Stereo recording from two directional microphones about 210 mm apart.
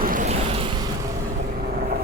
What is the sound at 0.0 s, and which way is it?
Waves, 40° right (ahead or behind).